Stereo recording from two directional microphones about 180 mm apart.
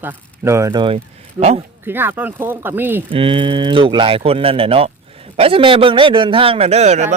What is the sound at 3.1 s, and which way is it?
Speech, 30° right (ahead or behind).